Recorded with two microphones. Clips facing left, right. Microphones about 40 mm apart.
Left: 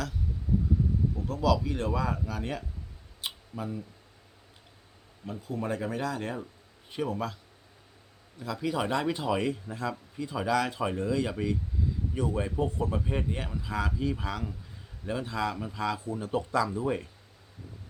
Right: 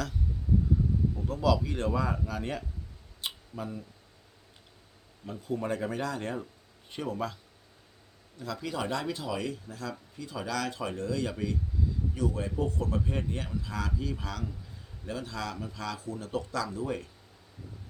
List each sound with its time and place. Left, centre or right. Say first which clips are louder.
1.3 s speech: left 1 dB; centre
3.2 s a sound: left 1 dB; centre
5.2 s speech: right 1 dB; centre
8.4 s speech: left 3 dB; centre; by 9.9 s left
9.9 s speech: left 4 dB; centre
12.5 s speech: left 2 dB; centre